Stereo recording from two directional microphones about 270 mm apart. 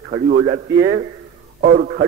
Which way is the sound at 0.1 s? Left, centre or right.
Right.